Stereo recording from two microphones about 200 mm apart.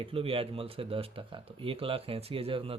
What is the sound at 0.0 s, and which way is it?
Speech, 25° right (ahead or behind).